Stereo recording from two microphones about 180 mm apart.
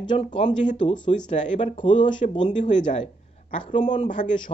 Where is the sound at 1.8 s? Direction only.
25° left (ahead or behind).